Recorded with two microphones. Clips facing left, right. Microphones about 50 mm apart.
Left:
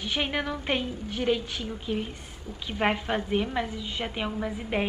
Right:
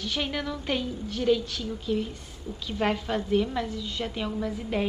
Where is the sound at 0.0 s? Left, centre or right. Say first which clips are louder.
Left 1 dB; left.